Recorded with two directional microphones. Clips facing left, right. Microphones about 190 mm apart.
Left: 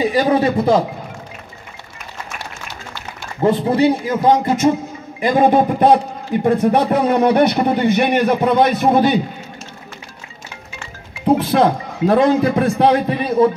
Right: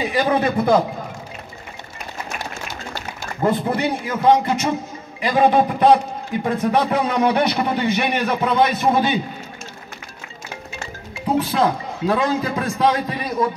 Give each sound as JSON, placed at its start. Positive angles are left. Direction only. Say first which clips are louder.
{"t": 0.1, "sound": "speech", "louder": "left 4 dB", "side_deg": 35}
{"t": 3.4, "sound": "a man's voice", "louder": "left 6 dB", "side_deg": 30}
{"t": 11.5, "sound": "a man's voice", "louder": "left 5 dB", "side_deg": 55}
{"t": 13.2, "sound": "speech", "louder": "left 10 dB", "side_deg": 30}